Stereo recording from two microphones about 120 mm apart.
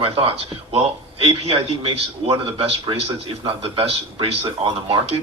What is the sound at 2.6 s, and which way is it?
A man's voice, 50° right (ahead or behind).